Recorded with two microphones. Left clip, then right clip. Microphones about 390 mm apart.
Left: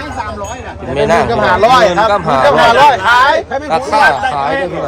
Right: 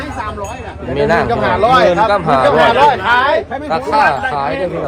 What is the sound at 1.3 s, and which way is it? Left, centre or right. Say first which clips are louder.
Speech: left 3 dB; left.